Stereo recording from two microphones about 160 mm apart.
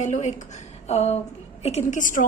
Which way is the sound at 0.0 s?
45° left (ahead or behind).